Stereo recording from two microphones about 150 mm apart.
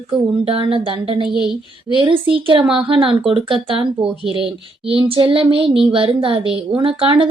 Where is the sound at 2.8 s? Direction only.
35° right (ahead or behind).